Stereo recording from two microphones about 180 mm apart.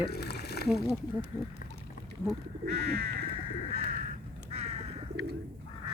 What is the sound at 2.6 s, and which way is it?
Bird, 65° right (ahead or behind).